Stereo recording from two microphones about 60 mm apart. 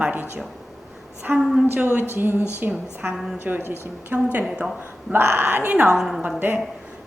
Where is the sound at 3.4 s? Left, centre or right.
Right.